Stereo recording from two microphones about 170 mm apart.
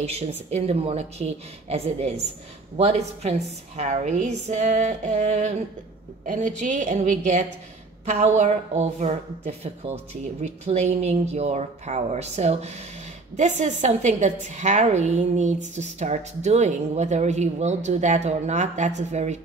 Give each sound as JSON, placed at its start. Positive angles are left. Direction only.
{"t": 0.0, "sound": "a woman's voice", "side_deg": -40}